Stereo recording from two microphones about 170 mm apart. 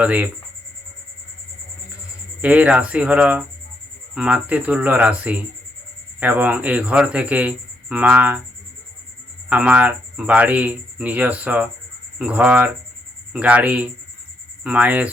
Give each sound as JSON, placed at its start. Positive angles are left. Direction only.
{"t": 0.0, "sound": "speech", "side_deg": -10}
{"t": 2.4, "sound": "speech", "side_deg": -10}
{"t": 9.5, "sound": "speech", "side_deg": -10}